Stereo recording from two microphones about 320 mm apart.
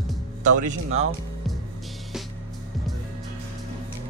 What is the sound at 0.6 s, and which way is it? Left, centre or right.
Speech, right.